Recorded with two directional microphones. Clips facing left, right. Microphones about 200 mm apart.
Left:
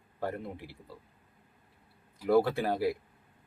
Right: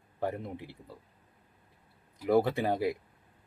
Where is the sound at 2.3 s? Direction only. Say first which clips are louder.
Even; 20° right (ahead or behind).